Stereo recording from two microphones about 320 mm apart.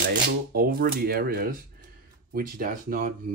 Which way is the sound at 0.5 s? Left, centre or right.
Right.